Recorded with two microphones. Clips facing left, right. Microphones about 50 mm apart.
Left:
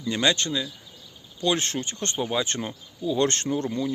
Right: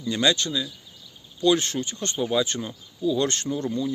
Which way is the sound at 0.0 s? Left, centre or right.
Left.